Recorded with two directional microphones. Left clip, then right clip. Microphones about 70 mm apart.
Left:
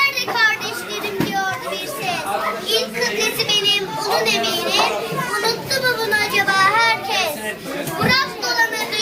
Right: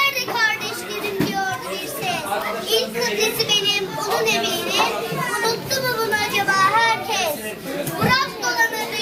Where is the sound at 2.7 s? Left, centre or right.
Centre.